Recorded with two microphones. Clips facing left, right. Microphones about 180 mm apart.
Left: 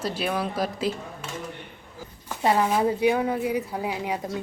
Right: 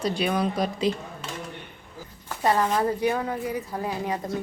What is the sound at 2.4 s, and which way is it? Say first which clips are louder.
Speech: left 1 dB; 10° left (ahead or behind).